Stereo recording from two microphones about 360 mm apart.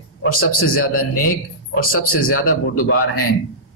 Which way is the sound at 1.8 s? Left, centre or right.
Left.